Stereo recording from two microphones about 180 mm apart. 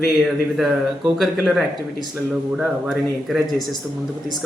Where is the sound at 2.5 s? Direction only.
Centre (ahead or behind).